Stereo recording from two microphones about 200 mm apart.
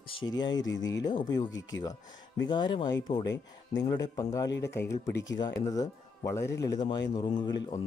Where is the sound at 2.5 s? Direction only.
25° left (ahead or behind).